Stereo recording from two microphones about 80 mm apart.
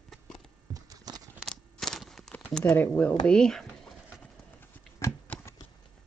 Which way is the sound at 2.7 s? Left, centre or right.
Left.